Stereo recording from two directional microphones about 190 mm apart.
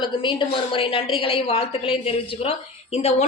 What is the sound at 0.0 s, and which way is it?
A woman's voice, 25° left (ahead or behind).